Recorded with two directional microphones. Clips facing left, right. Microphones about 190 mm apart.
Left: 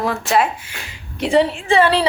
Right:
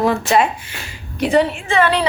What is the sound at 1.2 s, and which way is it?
Speech, 30° left (ahead or behind).